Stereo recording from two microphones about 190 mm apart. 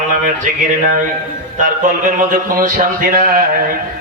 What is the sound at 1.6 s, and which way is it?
A man's voice, 45° right (ahead or behind).